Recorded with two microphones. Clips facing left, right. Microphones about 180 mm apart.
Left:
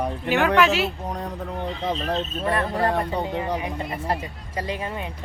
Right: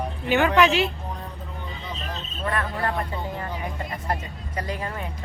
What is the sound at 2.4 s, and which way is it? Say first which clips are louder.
Speech: left 3 dB; 30° left (ahead or behind).